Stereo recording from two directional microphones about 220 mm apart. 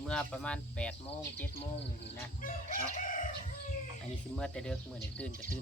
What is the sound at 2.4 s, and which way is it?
Crowing, 40° left (ahead or behind).